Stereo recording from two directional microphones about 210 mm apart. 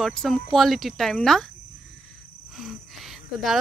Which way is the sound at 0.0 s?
Centre (ahead or behind).